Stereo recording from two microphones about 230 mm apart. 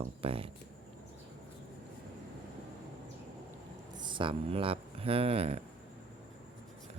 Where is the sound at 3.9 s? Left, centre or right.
Centre.